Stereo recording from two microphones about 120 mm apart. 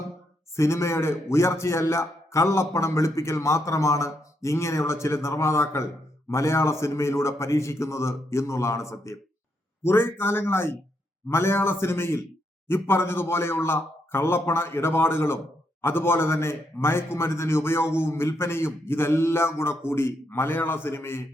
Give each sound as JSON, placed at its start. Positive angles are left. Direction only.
{"t": 0.5, "sound": "a man's voice", "side_deg": 25}